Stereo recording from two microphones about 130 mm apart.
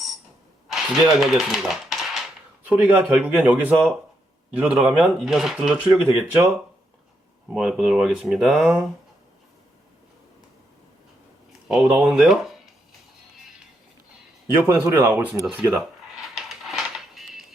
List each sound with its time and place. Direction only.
0.7 s speech: 5° right (ahead or behind)
7.5 s speech: 5° right (ahead or behind)
11.7 s speech: 5° right (ahead or behind)
14.5 s speech: 15° right (ahead or behind)
16.3 s music: centre (ahead or behind)